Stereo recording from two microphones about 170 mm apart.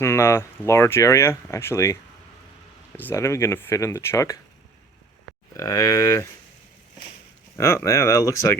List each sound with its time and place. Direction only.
0.0 s speech: 15° left (ahead or behind)
3.0 s speech: 15° left (ahead or behind)
5.5 s speech: 20° left (ahead or behind)
7.5 s speech: 15° left (ahead or behind)